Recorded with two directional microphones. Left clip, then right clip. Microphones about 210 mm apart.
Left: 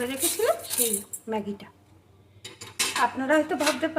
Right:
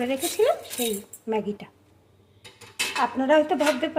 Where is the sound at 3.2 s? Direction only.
20° right (ahead or behind).